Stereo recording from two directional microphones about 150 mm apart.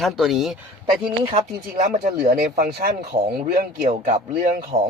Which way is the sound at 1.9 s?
85° right.